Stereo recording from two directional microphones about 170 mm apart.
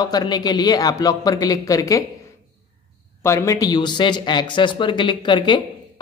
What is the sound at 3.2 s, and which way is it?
Speech, 15° left (ahead or behind).